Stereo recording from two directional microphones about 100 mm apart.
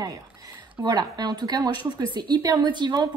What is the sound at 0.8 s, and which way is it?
A woman's voice, 45° right (ahead or behind).